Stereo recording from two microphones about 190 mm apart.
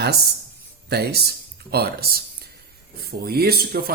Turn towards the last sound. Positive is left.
turn(degrees=-50)  # may be behind; listen again after turning